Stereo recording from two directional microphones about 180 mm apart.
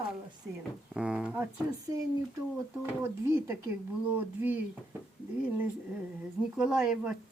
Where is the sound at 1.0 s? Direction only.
5° right (ahead or behind).